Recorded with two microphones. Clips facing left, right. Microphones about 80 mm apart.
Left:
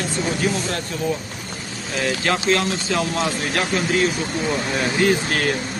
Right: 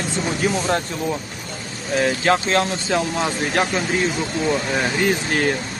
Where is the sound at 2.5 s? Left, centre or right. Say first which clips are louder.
Right 1 dB; right.